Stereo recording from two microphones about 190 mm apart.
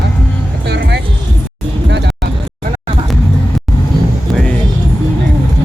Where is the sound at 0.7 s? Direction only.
65° right (ahead or behind).